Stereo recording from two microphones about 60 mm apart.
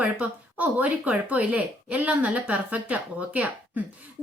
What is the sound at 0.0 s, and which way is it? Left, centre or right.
Speech, right.